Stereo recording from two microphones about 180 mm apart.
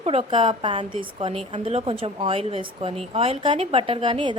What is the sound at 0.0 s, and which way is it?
A woman's voice, 35° right (ahead or behind).